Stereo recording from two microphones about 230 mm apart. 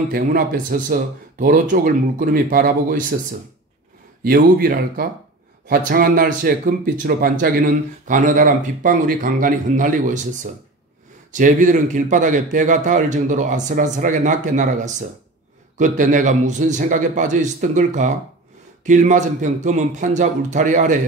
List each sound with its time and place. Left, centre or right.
0.1 s speech: right
4.2 s speech: right